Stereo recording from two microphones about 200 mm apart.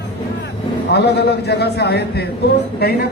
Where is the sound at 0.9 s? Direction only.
55° left (ahead or behind).